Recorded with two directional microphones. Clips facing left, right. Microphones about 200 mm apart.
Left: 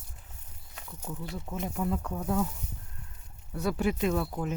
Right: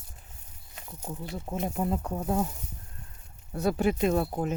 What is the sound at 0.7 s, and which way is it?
Speech, 25° right (ahead or behind).